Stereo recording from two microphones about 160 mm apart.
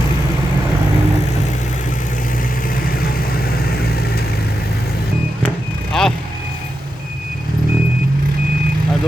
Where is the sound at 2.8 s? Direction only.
65° left (ahead or behind).